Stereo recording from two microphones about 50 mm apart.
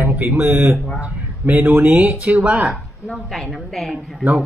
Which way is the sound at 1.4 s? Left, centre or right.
Right.